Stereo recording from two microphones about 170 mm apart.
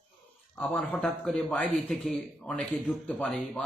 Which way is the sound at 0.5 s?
10° left (ahead or behind).